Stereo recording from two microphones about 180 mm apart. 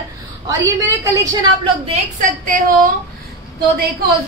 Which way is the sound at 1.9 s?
50° right (ahead or behind).